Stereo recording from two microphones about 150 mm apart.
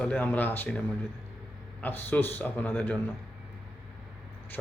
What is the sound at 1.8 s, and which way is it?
Speech, 10° left (ahead or behind).